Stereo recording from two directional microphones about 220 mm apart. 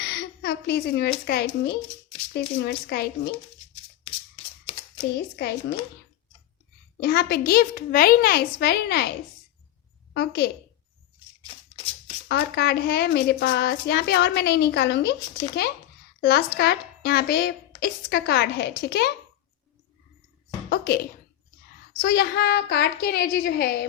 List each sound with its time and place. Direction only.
0.0 s a sound: 50° left (ahead or behind)
1.3 s a woman's voice: 45° left (ahead or behind)
4.9 s a woman's voice: 45° left (ahead or behind)
7.0 s a woman's voice: 45° left (ahead or behind)
10.2 s a woman's voice: 50° left (ahead or behind)
12.3 s a woman's voice: 50° left (ahead or behind)
20.7 s a sound: 45° left (ahead or behind)
21.9 s a woman's voice: 45° left (ahead or behind)